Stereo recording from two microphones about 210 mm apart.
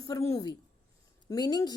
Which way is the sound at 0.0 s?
15° left (ahead or behind).